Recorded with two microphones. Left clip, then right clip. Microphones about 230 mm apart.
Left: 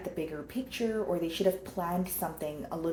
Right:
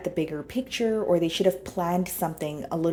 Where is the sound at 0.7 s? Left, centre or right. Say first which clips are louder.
Right 8 dB; right.